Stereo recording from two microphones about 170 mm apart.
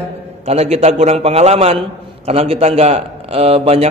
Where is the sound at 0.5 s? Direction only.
40° right (ahead or behind).